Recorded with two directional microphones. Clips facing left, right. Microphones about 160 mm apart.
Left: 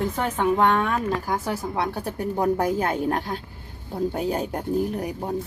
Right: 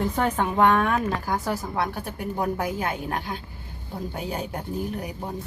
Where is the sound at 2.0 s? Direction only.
40° left (ahead or behind).